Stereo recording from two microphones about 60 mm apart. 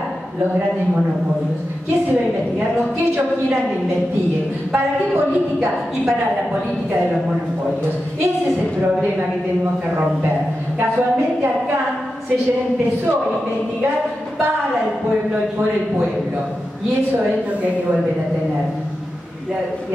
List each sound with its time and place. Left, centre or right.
4.7 s a woman's voice: right